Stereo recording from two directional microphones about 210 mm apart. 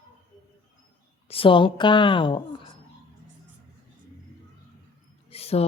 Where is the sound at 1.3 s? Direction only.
25° left (ahead or behind).